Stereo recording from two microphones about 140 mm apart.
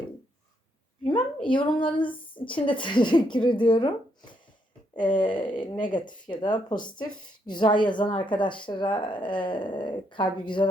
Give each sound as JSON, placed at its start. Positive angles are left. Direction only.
{"t": 1.5, "sound": "a woman's voice", "side_deg": 35}